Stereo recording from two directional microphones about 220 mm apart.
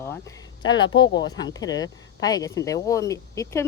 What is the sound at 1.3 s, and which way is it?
Speech, 15° left (ahead or behind).